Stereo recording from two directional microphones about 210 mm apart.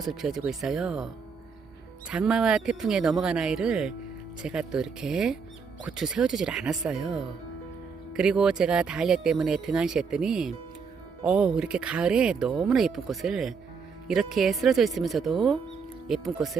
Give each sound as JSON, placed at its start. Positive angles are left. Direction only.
{"t": 0.0, "sound": "speech", "side_deg": 0}